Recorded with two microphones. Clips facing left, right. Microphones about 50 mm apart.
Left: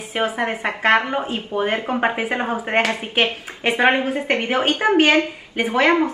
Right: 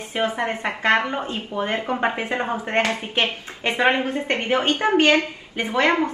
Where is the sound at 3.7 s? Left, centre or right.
Left.